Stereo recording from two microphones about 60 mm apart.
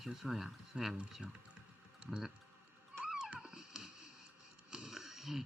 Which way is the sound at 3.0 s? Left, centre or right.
Centre.